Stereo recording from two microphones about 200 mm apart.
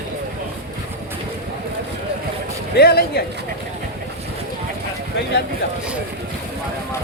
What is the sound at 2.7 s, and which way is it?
Speech, 50° left (ahead or behind).